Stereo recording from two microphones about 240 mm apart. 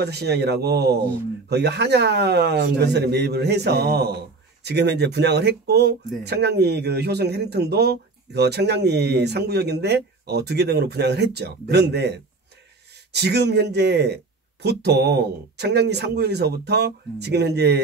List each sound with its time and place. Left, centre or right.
0.0 s speech: right